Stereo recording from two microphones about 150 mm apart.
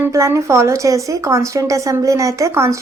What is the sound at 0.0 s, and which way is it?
Speech, 20° right (ahead or behind).